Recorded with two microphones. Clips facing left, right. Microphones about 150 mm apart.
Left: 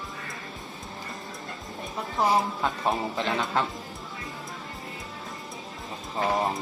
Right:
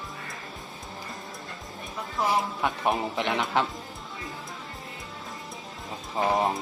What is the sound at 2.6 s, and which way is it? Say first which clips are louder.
Speech: right 1 dB; 15° right (ahead or behind).